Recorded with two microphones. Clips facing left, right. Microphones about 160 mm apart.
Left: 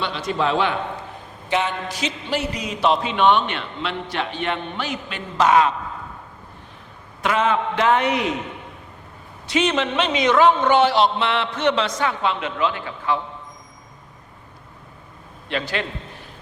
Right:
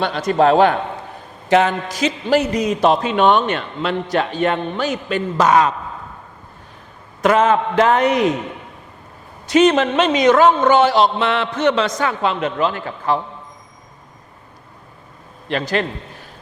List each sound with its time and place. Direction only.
0.0 s speech: 45° right (ahead or behind)
7.2 s speech: 45° right (ahead or behind)
9.5 s speech: 45° right (ahead or behind)
15.4 s speech: 40° right (ahead or behind)